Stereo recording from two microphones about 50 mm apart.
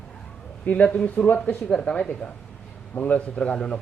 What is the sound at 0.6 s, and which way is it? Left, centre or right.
Speech, left.